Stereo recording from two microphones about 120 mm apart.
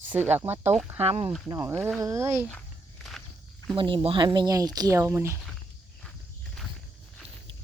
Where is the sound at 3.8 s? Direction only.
45° right (ahead or behind); by 5.4 s 20° right (ahead or behind).